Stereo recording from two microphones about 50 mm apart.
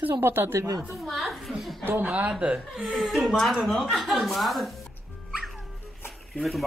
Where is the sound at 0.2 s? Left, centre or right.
Right.